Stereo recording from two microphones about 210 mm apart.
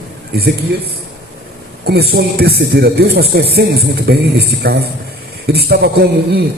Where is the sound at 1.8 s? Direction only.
50° right (ahead or behind).